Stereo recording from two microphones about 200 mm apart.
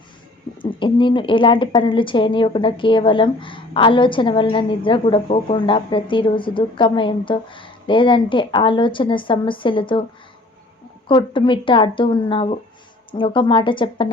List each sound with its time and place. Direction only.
0.6 s a woman's voice: 25° left (ahead or behind)
11.1 s a woman's voice: 25° left (ahead or behind)